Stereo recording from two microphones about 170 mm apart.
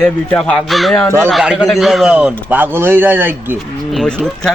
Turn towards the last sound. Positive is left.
turn(degrees=5)  # may be behind; listen again after turning